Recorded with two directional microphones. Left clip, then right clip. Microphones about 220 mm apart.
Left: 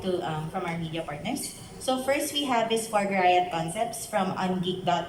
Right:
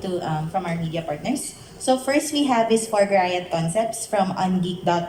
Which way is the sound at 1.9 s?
25° right (ahead or behind).